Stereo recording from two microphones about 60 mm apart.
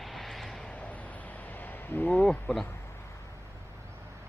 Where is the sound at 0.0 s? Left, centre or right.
Centre.